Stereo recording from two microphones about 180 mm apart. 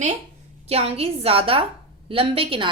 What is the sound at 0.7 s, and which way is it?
A woman's voice, 35° right (ahead or behind).